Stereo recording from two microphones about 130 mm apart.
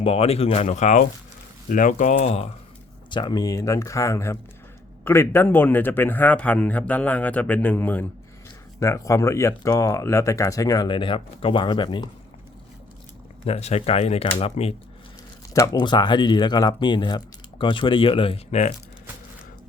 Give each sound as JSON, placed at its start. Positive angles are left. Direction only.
{"t": 0.0, "sound": "speech", "side_deg": 50}
{"t": 1.7, "sound": "speech", "side_deg": 90}
{"t": 3.1, "sound": "speech", "side_deg": 35}
{"t": 10.8, "sound": "speech", "side_deg": 40}
{"t": 13.4, "sound": "speech", "side_deg": 55}
{"t": 15.5, "sound": "speech", "side_deg": 30}